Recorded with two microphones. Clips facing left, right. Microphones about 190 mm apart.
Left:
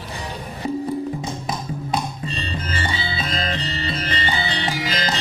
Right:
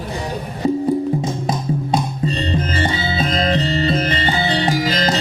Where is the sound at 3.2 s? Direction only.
40° right (ahead or behind).